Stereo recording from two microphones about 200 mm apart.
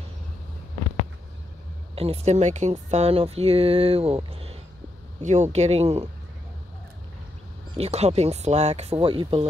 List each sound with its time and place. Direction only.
2.0 s speech: 30° right (ahead or behind)
7.7 s speech: 30° right (ahead or behind)